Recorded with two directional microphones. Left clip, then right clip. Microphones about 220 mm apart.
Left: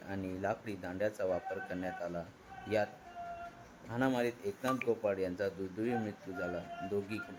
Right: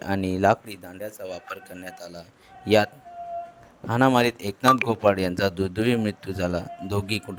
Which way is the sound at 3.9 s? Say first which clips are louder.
Right 14 dB; 45° right (ahead or behind).